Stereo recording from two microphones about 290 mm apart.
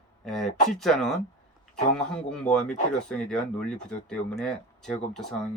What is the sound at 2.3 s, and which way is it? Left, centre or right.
Speech, centre.